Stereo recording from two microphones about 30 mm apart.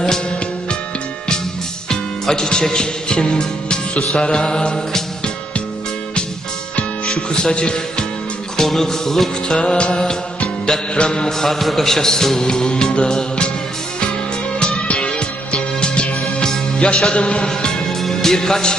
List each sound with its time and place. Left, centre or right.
2.3 s music: left
7.3 s music: left
8.6 s speech: centre
9.5 s music: left
11.3 s speech: centre
12.4 s music: left
15.0 s music: left
17.5 s music: left